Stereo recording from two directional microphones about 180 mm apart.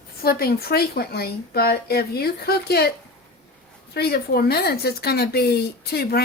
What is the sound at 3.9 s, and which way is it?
A woman's voice, 60° left (ahead or behind).